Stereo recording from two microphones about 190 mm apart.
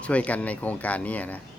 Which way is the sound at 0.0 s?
5° left (ahead or behind).